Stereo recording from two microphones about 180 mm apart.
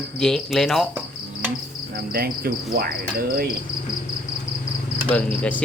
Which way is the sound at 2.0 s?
55° right (ahead or behind).